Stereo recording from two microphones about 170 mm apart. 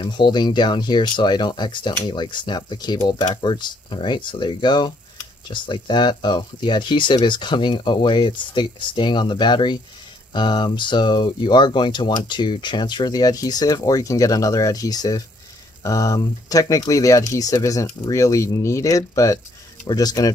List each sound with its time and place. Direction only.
0.0 s speech: 25° left (ahead or behind)